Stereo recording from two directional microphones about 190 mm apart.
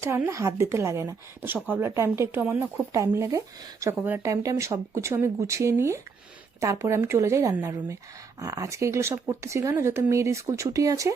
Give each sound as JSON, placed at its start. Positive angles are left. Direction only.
{"t": 0.0, "sound": "speech", "side_deg": -15}